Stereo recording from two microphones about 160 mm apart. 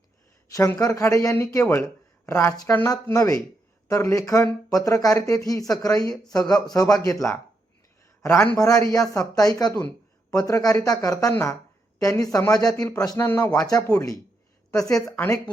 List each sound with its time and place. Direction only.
0.5 s a man's voice: 20° left (ahead or behind)
15.0 s speech: 5° left (ahead or behind)